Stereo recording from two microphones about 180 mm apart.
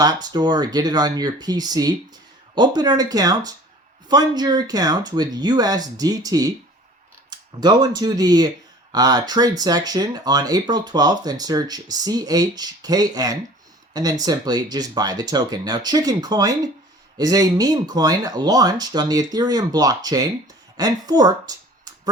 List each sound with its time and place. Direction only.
0.0 s speech: 20° right (ahead or behind)